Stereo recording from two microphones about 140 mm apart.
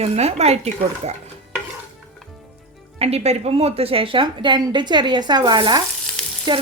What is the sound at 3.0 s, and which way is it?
Speech, 45° right (ahead or behind).